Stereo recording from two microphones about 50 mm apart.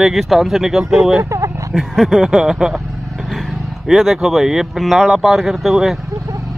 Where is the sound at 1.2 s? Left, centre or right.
Right.